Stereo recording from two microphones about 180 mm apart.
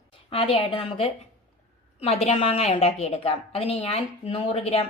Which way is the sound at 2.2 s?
35° left (ahead or behind).